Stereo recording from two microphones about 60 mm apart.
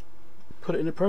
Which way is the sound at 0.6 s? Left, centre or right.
Centre.